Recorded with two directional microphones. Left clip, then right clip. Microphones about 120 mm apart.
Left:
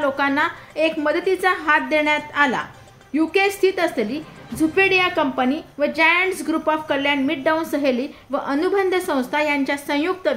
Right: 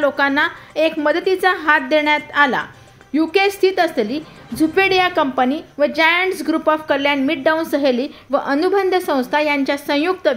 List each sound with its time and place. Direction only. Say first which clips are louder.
0.0 s a woman's voice: right 3 dB; 30° right (ahead or behind)